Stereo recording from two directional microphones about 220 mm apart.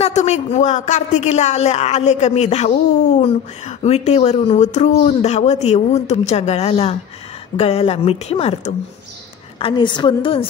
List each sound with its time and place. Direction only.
0.0 s speech: 30° left (ahead or behind)